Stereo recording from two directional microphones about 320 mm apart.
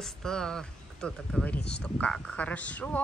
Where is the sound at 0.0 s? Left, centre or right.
Centre.